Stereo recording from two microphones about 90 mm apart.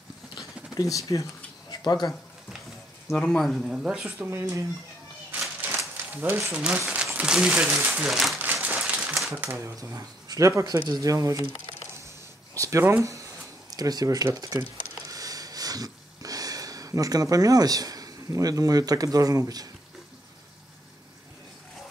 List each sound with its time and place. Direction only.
0.7 s speech: 40° left (ahead or behind)
1.7 s a sound: 55° left (ahead or behind)
3.2 s speech: centre (ahead or behind)
4.2 s speech: 30° right (ahead or behind)
5.8 s crumpling: 30° right (ahead or behind)
6.5 s speech: 15° right (ahead or behind)
8.6 s a sound: 15° right (ahead or behind)
9.4 s speech: 30° right (ahead or behind)
12.5 s a sound: 35° right (ahead or behind)